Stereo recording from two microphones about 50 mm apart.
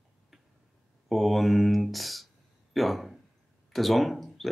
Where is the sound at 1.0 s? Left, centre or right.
Centre.